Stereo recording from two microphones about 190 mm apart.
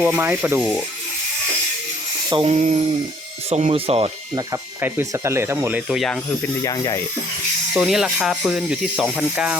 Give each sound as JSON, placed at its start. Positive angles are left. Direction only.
{"t": 0.0, "sound": "speech", "side_deg": -10}
{"t": 2.3, "sound": "speech", "side_deg": -30}
{"t": 4.4, "sound": "speech", "side_deg": -15}
{"t": 6.6, "sound": "speech", "side_deg": 15}
{"t": 7.7, "sound": "speech", "side_deg": 0}